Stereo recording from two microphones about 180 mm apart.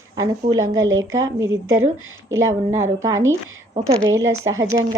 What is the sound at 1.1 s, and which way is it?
Speech, 90° right.